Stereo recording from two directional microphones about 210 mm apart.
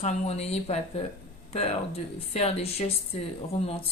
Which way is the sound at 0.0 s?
30° left (ahead or behind).